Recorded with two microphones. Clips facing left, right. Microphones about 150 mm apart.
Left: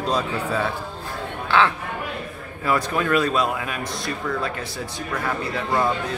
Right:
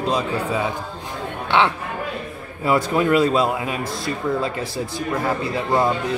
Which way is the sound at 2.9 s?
20° right (ahead or behind).